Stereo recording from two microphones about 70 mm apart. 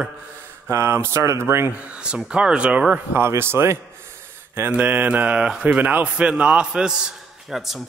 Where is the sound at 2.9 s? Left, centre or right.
Right.